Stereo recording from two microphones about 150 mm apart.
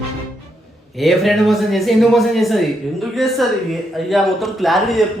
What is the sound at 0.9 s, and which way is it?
Speech, centre (ahead or behind).